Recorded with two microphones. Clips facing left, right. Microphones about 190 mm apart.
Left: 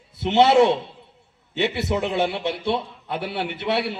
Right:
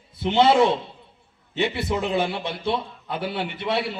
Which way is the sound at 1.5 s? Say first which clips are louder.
Left 1 dB; 65° left (ahead or behind).